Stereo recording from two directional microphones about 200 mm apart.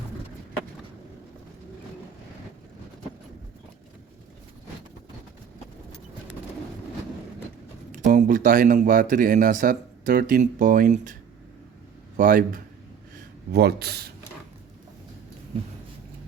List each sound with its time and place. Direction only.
8.0 s speech: 40° right (ahead or behind)
12.1 s speech: 40° right (ahead or behind)
13.5 s speech: 55° right (ahead or behind)